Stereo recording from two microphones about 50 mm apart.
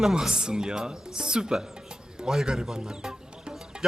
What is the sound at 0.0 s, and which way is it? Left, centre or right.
Speech, centre.